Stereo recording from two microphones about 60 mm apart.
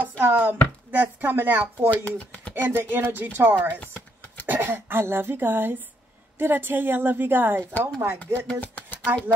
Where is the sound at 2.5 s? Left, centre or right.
Right.